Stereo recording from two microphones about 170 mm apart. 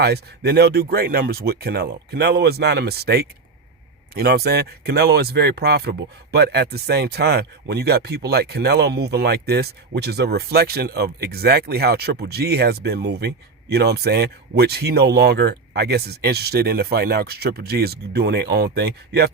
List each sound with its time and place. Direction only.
0.0 s speech: 75° right (ahead or behind)